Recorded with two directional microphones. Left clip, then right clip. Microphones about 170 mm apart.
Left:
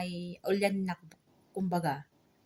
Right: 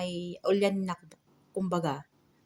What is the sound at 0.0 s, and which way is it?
Speech, 15° left (ahead or behind).